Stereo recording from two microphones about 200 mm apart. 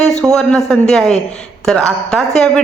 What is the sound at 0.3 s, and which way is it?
A woman's voice, centre (ahead or behind).